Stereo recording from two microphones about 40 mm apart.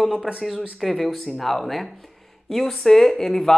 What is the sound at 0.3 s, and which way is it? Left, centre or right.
Speech, centre.